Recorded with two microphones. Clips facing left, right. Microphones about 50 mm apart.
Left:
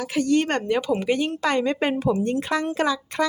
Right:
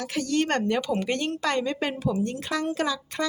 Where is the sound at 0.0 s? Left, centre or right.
Centre.